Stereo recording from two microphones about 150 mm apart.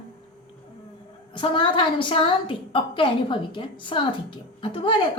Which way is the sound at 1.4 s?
35° left (ahead or behind).